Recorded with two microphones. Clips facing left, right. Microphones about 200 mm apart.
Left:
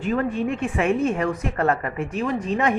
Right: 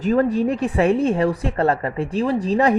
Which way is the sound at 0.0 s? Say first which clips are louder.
Right 5 dB; 40° right (ahead or behind).